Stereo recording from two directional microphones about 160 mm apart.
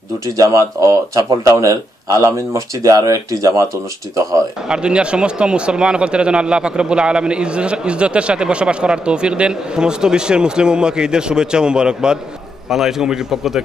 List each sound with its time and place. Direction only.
0.4 s speech: 20° right (ahead or behind)
4.6 s speech: 5° right (ahead or behind)